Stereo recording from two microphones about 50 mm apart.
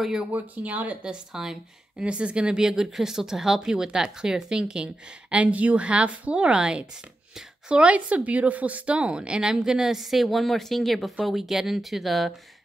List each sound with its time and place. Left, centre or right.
0.3 s speech: right
1.0 s speech: centre
2.0 s speech: right; by 12.4 s centre